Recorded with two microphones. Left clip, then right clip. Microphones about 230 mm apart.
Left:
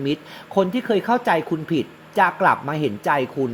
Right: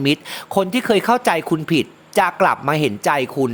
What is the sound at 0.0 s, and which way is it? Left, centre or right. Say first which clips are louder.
Speech: right 6 dB; right.